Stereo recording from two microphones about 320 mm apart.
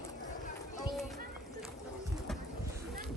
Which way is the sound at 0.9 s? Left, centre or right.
Centre.